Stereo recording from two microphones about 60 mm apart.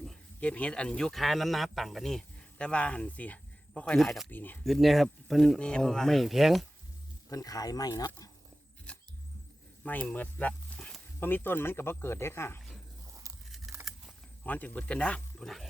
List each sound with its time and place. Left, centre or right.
0.3 s speech: left; by 2.2 s centre
2.6 s speech: centre
3.9 s speech: centre
4.3 s speech: left
4.6 s speech: centre
5.5 s speech: centre
5.8 s speech: centre
7.3 s speech: left
9.8 s speech: left
10.7 s a sound: left
11.2 s speech: left
13.9 s keys jangling: centre
14.4 s speech: left